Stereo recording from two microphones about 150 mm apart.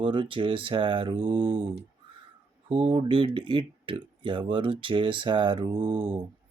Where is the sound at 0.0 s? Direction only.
35° right (ahead or behind).